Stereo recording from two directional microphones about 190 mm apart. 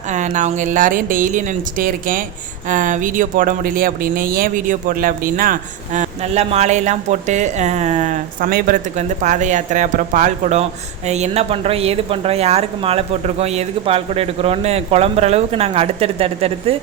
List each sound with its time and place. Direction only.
0.1 s speech: 40° right (ahead or behind)